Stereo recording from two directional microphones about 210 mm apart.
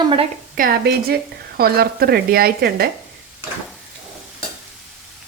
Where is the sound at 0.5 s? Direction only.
45° right (ahead or behind).